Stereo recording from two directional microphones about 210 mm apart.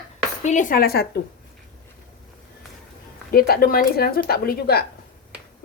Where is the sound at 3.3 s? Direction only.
45° left (ahead or behind).